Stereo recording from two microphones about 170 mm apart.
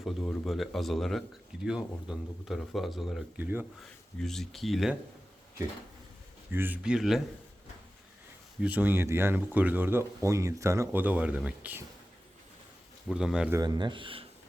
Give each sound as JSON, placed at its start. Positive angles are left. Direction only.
{"t": 0.0, "sound": "speech", "side_deg": 0}
{"t": 3.3, "sound": "speech", "side_deg": -10}
{"t": 4.2, "sound": "speech", "side_deg": 0}
{"t": 6.5, "sound": "speech", "side_deg": -10}
{"t": 8.6, "sound": "speech", "side_deg": -10}
{"t": 13.1, "sound": "speech", "side_deg": -5}
{"t": 13.5, "sound": "speech", "side_deg": -20}